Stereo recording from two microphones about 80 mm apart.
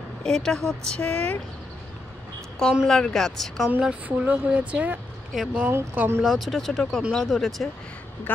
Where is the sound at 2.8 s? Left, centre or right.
Centre.